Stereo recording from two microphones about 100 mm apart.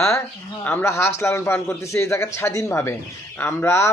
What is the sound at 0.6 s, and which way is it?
A man's voice, 25° left (ahead or behind).